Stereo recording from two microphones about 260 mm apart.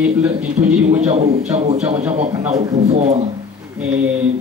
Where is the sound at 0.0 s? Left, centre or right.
Centre.